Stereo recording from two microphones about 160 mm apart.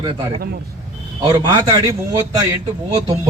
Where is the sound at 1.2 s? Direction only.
25° right (ahead or behind).